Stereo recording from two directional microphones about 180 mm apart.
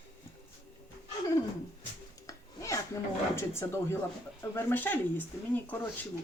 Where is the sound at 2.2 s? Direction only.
15° left (ahead or behind).